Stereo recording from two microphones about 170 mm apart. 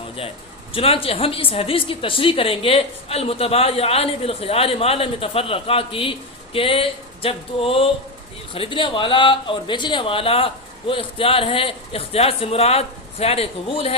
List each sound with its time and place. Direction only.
0.7 s a woman's voice: 35° left (ahead or behind)